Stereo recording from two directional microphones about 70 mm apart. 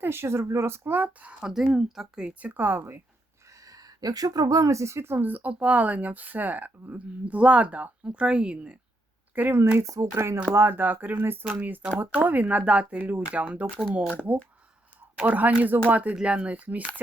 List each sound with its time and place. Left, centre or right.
0.0 s speech: right
1.4 s speech: centre
2.4 s speech: right
3.5 s speech: right; by 8.8 s centre
9.3 s speech: right
9.8 s speech: right
10.5 s speech: right
15.2 s speech: right